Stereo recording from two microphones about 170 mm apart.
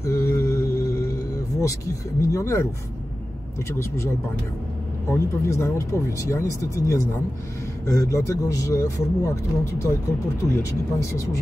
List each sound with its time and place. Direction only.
0.0 s a sound: 15° left (ahead or behind)
2.3 s a man's voice: 15° left (ahead or behind)
5.1 s a man's voice: 15° left (ahead or behind)